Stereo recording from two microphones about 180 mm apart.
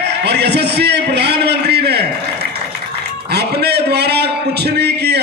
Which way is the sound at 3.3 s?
65° right (ahead or behind).